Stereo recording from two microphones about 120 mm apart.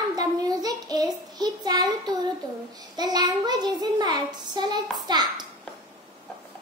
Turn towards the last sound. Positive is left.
turn(degrees=-35)  # may be behind; listen again after turning